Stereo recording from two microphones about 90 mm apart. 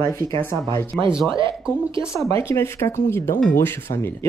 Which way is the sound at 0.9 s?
5° left (ahead or behind).